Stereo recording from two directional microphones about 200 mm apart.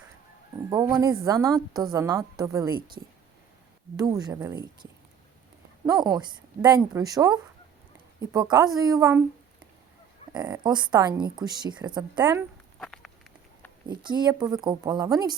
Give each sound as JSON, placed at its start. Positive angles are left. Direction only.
{"t": 0.5, "sound": "a woman's voice", "side_deg": -15}
{"t": 2.7, "sound": "speech", "side_deg": -45}
{"t": 3.9, "sound": "a woman's voice", "side_deg": -20}
{"t": 10.3, "sound": "a woman's voice", "side_deg": -20}
{"t": 12.8, "sound": "a sound", "side_deg": 0}
{"t": 13.8, "sound": "a woman's voice", "side_deg": -20}